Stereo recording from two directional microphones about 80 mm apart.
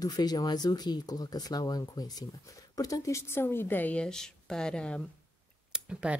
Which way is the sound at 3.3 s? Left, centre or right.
Left.